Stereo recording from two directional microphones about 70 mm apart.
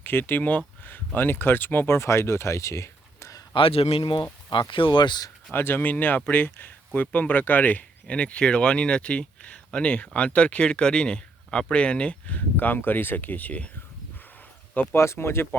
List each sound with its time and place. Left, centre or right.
0.0 s speech: left
4.0 s speech: left
5.5 s speech: left
14.9 s speech: left